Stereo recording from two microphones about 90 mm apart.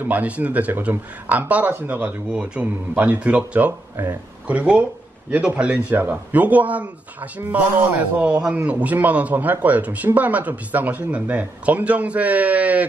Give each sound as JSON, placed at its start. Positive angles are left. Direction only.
{"t": 0.0, "sound": "a man's voice", "side_deg": -20}
{"t": 3.9, "sound": "speech", "side_deg": -25}
{"t": 4.5, "sound": "a man's voice", "side_deg": -15}